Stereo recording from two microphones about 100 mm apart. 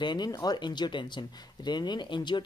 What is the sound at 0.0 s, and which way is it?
Speech, 45° left (ahead or behind).